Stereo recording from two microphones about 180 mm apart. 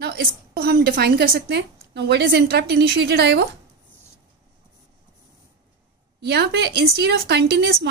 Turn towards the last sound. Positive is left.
turn(degrees=-65)  # may be behind; listen again after turning